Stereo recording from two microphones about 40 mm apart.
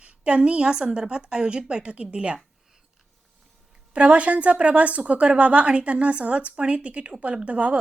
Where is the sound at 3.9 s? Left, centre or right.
Right.